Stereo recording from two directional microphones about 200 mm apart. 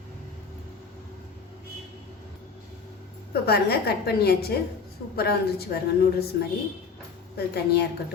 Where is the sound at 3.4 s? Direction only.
50° left (ahead or behind).